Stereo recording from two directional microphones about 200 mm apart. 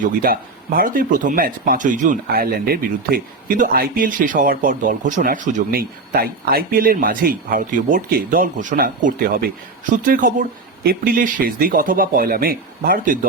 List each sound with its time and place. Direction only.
0.0 s speech: 45° right (ahead or behind)